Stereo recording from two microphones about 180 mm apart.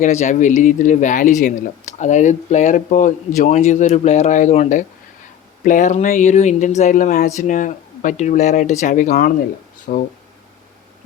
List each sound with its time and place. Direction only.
0.0 s speech: 40° left (ahead or behind)